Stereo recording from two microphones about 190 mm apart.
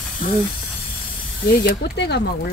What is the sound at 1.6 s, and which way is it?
Speech, 65° left (ahead or behind).